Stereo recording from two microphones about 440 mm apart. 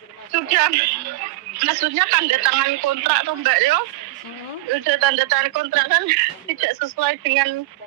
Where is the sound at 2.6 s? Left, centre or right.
Right.